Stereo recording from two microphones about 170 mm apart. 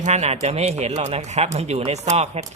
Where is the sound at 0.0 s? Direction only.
40° right (ahead or behind).